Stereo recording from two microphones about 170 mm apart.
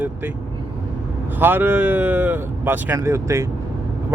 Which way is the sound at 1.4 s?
10° right (ahead or behind).